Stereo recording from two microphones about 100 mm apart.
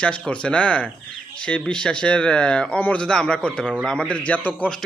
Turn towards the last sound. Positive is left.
turn(degrees=15)  # may be behind; listen again after turning